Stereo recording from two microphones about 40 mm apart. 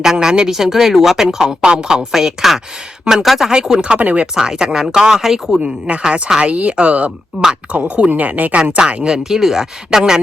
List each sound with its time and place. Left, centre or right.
0.0 s speech: centre
3.5 s speech: centre
3.9 s speech: right
4.4 s speech: centre
5.5 s speech: right
8.2 s speech: right
9.0 s speech: centre